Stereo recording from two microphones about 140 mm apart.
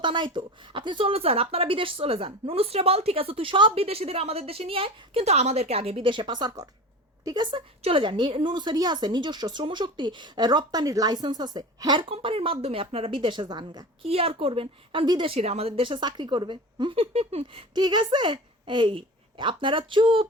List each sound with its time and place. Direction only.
0.0 s speech: 35° right (ahead or behind)
14.1 s speech: 45° right (ahead or behind)
15.3 s speech: 50° right (ahead or behind)
17.7 s a woman's voice: 30° right (ahead or behind)